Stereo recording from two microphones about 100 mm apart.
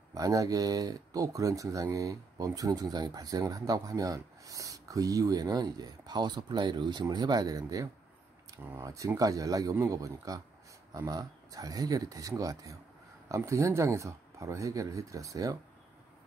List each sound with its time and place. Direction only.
0.1 s speech: 35° right (ahead or behind)